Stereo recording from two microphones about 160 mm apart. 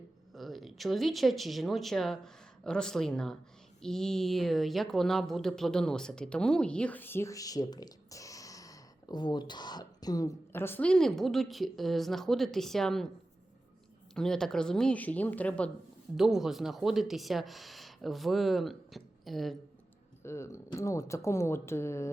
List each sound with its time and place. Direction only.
0.3 s a woman's voice: centre (ahead or behind)
14.2 s speech: 5° left (ahead or behind)
16.1 s a woman's voice: centre (ahead or behind)
20.2 s speech: 15° left (ahead or behind)